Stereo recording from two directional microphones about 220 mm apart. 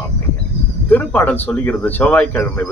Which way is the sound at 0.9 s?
10° left (ahead or behind).